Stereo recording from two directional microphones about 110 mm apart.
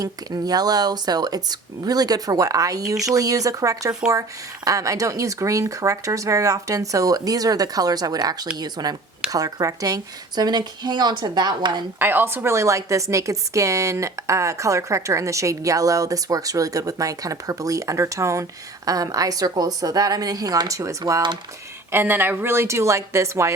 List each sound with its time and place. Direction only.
0.0 s speech: 35° right (ahead or behind)
11.9 s a woman's voice: 20° right (ahead or behind)
21.9 s a woman's voice: 20° right (ahead or behind)